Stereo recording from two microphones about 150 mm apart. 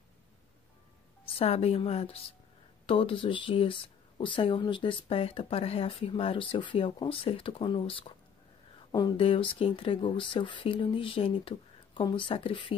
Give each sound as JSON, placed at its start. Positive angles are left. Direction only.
{"t": 1.2, "sound": "speech", "side_deg": 40}